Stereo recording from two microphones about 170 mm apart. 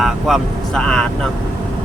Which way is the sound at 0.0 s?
Centre (ahead or behind).